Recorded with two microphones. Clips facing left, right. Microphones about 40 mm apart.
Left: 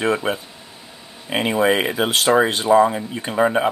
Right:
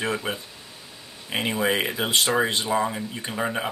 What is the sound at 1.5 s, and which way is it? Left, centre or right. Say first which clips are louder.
Speech: left 7 dB; left.